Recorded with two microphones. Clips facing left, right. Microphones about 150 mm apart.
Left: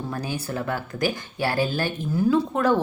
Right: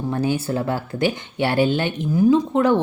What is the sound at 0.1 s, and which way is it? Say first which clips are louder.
Speech: right 11 dB; 25° right (ahead or behind).